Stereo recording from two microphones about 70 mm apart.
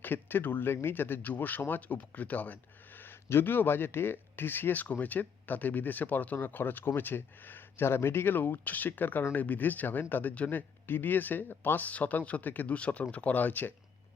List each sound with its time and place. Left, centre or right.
0.0 s speech: left